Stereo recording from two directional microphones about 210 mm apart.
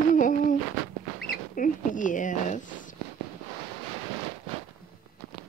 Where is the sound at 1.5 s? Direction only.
40° left (ahead or behind).